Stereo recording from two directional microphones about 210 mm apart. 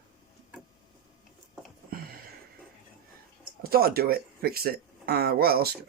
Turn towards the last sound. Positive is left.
turn(degrees=-45)  # may be behind; listen again after turning